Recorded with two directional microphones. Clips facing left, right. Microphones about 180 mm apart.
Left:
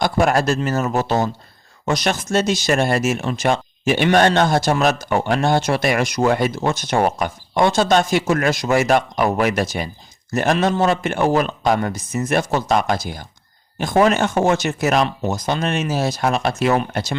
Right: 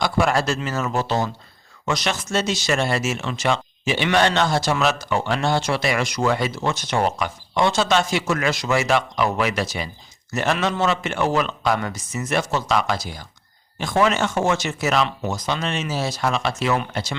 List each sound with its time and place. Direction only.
0.0 s speech: 50° left (ahead or behind)